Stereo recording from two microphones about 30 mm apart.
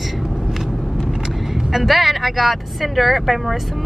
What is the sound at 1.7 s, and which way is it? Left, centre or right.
Speech, centre.